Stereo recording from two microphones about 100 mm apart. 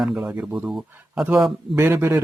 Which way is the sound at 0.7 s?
Centre (ahead or behind).